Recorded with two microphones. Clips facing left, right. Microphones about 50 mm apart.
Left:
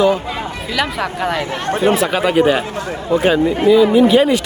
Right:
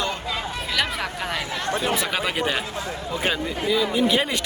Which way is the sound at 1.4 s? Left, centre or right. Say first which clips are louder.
Left 6 dB; left.